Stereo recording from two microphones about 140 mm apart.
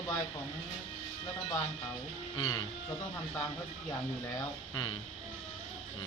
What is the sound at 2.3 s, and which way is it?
Speech, 30° left (ahead or behind).